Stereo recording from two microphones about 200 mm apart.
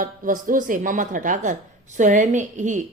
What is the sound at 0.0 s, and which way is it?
A woman's voice, 45° right (ahead or behind).